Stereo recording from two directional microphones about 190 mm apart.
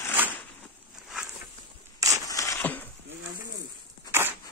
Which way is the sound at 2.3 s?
15° left (ahead or behind).